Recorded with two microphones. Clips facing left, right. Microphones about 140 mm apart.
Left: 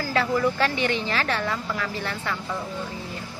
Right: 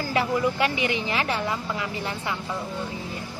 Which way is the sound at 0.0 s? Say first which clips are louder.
Left 1 dB; 15° right (ahead or behind).